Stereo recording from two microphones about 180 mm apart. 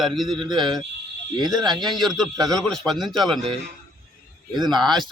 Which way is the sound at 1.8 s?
Centre (ahead or behind).